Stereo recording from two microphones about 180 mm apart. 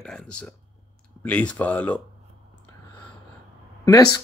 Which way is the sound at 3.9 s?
20° left (ahead or behind).